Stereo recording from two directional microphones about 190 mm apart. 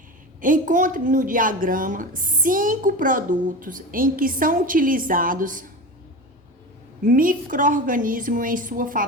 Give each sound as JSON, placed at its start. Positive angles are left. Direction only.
{"t": 0.4, "sound": "a woman's voice", "side_deg": -45}
{"t": 7.0, "sound": "a woman's voice", "side_deg": -45}